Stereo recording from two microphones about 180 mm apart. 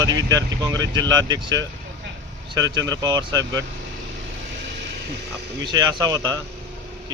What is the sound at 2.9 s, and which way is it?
Speech, 20° right (ahead or behind).